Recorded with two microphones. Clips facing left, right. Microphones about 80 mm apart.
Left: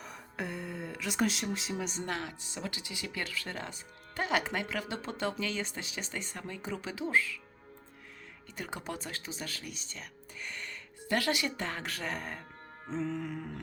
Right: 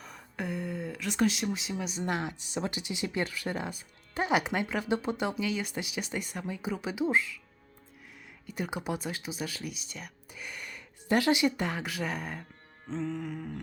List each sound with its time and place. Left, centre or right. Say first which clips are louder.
0.0 s speech: right 2 dB; centre
2.0 s speech: right 4 dB; centre
8.4 s speech: right 6 dB; centre
12.9 s music: right 1 dB; centre